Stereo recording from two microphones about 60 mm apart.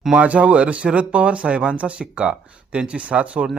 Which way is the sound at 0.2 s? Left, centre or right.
Right.